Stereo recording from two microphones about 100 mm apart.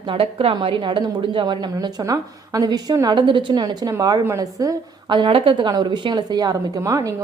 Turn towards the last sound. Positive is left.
turn(degrees=-30)  # may be behind; listen again after turning